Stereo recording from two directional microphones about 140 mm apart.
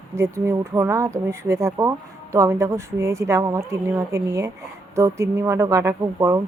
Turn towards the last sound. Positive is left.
turn(degrees=-20)  # may be behind; listen again after turning